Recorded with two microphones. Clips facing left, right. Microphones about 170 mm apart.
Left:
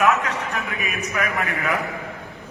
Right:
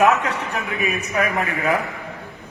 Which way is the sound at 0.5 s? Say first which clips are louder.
Right 4 dB; 35° right (ahead or behind).